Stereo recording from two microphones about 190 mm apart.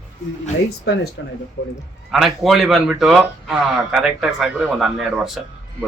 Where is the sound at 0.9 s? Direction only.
65° left (ahead or behind).